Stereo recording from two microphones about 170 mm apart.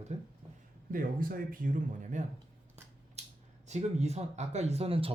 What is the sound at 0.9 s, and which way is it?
Speech, 55° right (ahead or behind).